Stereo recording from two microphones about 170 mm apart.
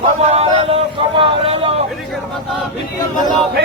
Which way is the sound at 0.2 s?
40° right (ahead or behind).